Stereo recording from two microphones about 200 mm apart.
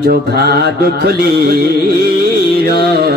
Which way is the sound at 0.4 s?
50° right (ahead or behind).